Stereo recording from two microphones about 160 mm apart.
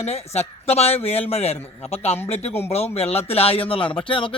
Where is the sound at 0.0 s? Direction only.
40° left (ahead or behind).